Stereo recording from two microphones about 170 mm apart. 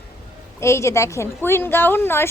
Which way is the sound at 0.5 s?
15° left (ahead or behind).